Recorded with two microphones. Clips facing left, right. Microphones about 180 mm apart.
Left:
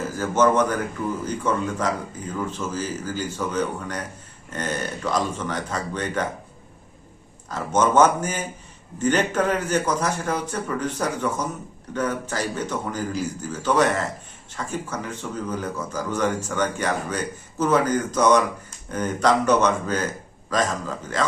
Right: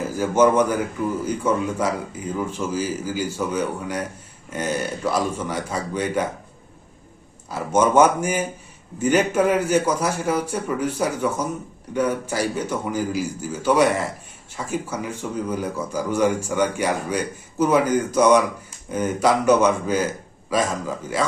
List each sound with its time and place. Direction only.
0.2 s speech: 10° right (ahead or behind)
7.5 s speech: 10° right (ahead or behind)